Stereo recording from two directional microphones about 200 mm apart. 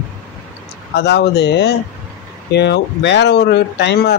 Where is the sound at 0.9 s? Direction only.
55° left (ahead or behind).